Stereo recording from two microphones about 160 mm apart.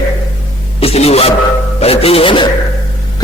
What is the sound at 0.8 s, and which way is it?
A man's voice, 40° left (ahead or behind).